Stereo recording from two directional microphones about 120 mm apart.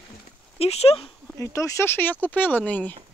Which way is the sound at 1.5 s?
25° left (ahead or behind).